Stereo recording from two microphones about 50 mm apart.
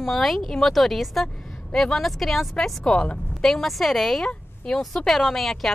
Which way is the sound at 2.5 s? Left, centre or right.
Centre.